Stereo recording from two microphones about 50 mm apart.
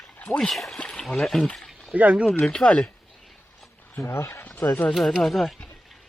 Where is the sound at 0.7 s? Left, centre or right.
Centre.